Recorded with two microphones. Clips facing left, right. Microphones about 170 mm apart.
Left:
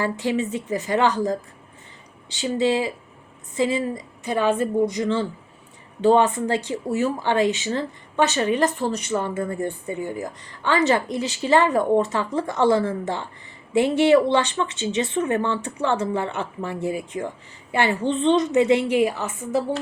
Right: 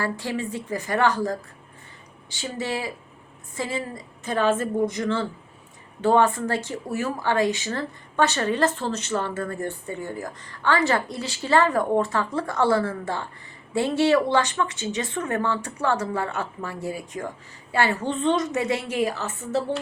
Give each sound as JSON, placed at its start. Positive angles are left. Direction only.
{"t": 0.0, "sound": "a woman's voice", "side_deg": 20}